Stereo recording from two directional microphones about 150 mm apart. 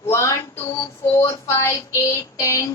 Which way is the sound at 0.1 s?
20° left (ahead or behind).